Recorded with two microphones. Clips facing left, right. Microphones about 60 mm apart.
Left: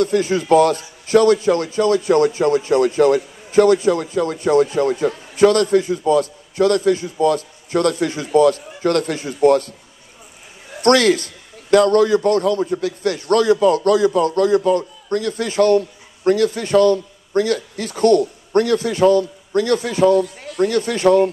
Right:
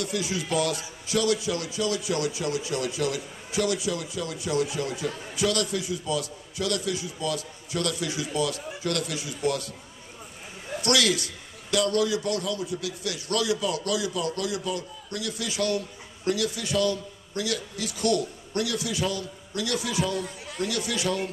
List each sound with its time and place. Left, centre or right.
0.0 s a man's voice: left
10.8 s a man's voice: left